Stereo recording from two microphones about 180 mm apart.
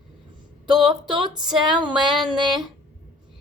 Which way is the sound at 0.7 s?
Centre (ahead or behind).